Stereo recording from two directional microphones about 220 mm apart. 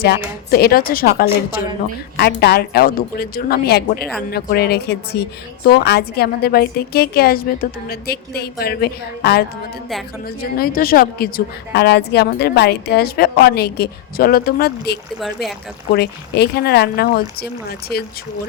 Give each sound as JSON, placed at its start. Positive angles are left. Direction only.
{"t": 0.0, "sound": "a woman's voice", "side_deg": 45}
{"t": 2.1, "sound": "a woman's voice", "side_deg": 45}
{"t": 15.2, "sound": "speech", "side_deg": 0}
{"t": 15.9, "sound": "a woman's voice", "side_deg": 45}